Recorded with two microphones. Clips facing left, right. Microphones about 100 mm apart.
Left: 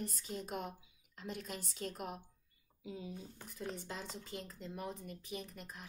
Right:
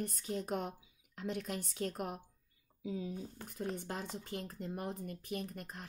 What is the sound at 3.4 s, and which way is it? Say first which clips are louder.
A woman's voice: right 3 dB; 50° right (ahead or behind).